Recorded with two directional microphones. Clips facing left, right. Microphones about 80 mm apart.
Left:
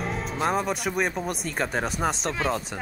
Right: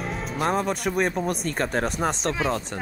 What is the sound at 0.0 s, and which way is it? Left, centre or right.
Music, centre.